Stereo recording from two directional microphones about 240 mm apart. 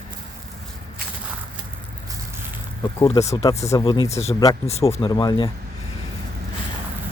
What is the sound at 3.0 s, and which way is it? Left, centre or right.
Speech, left.